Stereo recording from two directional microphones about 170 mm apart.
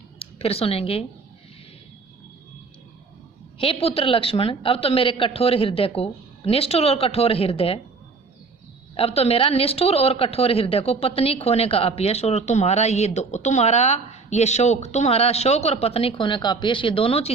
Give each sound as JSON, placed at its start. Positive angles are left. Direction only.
{"t": 0.2, "sound": "speech", "side_deg": 35}
{"t": 3.6, "sound": "a woman's voice", "side_deg": 35}
{"t": 9.0, "sound": "a woman's voice", "side_deg": 35}